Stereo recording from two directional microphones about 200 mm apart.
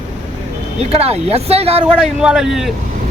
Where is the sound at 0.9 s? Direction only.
30° right (ahead or behind).